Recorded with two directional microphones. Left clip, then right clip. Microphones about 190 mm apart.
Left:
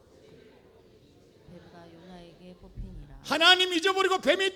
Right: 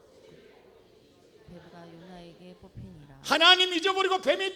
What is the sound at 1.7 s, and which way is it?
A woman's voice, centre (ahead or behind).